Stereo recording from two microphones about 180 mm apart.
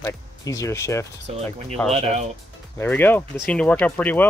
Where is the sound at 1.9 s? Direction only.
35° right (ahead or behind).